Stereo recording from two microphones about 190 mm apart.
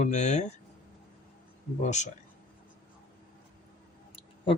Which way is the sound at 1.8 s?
40° left (ahead or behind).